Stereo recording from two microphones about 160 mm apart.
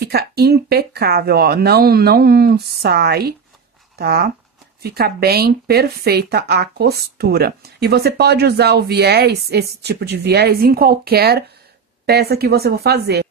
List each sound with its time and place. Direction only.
0.0 s speech: 75° right (ahead or behind)
4.0 s speech: 75° right (ahead or behind)